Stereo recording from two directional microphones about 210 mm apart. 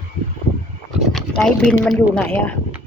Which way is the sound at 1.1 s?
5° left (ahead or behind).